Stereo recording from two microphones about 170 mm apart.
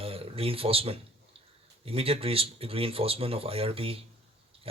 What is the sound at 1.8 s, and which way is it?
A man's voice, 35° right (ahead or behind).